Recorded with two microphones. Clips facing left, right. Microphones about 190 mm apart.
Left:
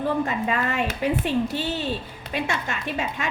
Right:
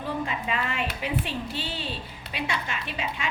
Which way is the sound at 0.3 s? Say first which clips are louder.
Left 5 dB; 45° left (ahead or behind).